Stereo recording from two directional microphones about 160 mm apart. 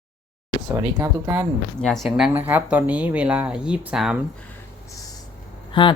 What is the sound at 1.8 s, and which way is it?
Speech, centre (ahead or behind).